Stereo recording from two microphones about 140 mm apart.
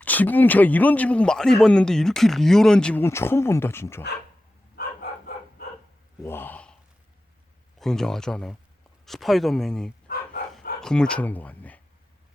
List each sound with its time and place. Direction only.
0.0 s speech: 10° left (ahead or behind)
3.0 s speech: 20° left (ahead or behind)
6.2 s speech: 15° left (ahead or behind)
7.8 s speech: 5° left (ahead or behind)